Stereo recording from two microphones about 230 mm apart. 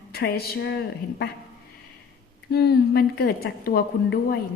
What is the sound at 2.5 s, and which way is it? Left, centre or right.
A woman's voice, left.